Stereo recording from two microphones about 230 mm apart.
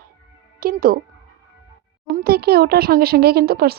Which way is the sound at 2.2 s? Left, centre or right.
Right.